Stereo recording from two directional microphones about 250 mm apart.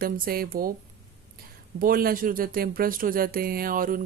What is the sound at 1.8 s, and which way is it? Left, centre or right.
Speech, right.